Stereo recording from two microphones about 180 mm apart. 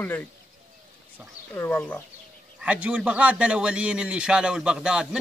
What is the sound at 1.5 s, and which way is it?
Speech, 10° left (ahead or behind).